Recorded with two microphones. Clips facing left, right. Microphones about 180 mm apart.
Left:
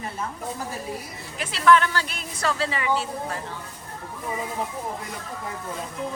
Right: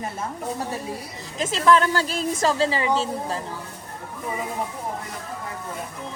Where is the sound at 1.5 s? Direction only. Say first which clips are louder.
Even; 35° right (ahead or behind).